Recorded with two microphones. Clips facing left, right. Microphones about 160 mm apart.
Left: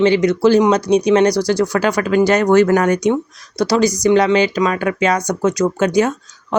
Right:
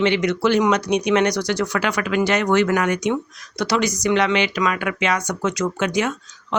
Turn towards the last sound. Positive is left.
turn(degrees=40)  # may be behind; listen again after turning